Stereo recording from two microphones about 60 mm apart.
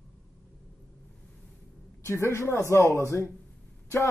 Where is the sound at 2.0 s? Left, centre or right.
Left.